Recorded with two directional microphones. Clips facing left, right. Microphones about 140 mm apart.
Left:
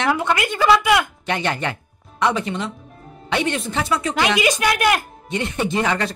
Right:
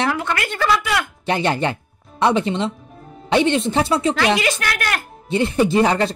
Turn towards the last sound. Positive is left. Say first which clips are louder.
# right 5 dB
turn(degrees=-30)  # may be behind; listen again after turning